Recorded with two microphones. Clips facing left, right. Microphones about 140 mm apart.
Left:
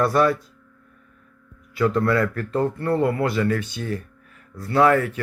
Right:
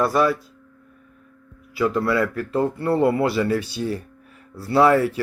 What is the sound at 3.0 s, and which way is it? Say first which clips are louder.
Speech: right 3 dB; 25° right (ahead or behind).